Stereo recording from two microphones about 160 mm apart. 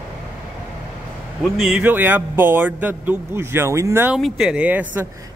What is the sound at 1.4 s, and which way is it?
Speech, 5° right (ahead or behind).